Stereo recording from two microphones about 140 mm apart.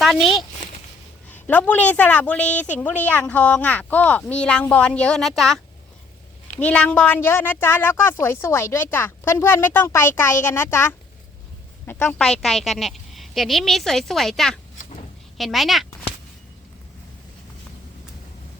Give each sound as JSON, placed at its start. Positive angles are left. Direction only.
{"t": 0.0, "sound": "speech", "side_deg": 0}
{"t": 1.3, "sound": "a woman's voice", "side_deg": 10}
{"t": 6.6, "sound": "a woman's voice", "side_deg": 10}
{"t": 11.9, "sound": "speech", "side_deg": 15}